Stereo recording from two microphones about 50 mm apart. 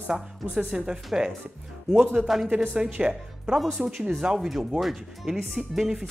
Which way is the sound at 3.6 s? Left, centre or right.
Centre.